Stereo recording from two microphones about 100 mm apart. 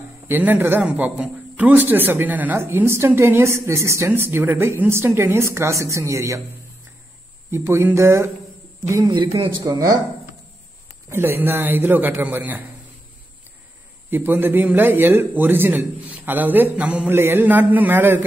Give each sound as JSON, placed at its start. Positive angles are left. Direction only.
{"t": 0.3, "sound": "speech", "side_deg": -20}
{"t": 7.5, "sound": "speech", "side_deg": -25}
{"t": 9.0, "sound": "a man's voice", "side_deg": -50}
{"t": 9.6, "sound": "speech", "side_deg": -40}
{"t": 11.1, "sound": "speech", "side_deg": -20}
{"t": 14.1, "sound": "speech", "side_deg": -20}